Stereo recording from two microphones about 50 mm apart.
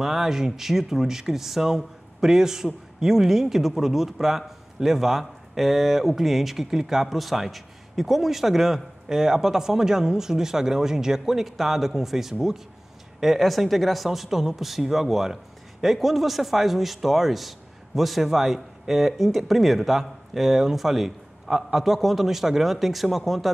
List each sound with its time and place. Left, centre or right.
0.0 s speech: centre